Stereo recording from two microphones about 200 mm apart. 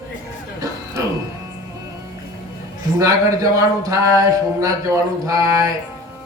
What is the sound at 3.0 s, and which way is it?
Speech, 15° right (ahead or behind).